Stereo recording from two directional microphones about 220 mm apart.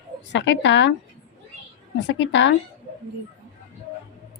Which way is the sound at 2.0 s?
55° left (ahead or behind).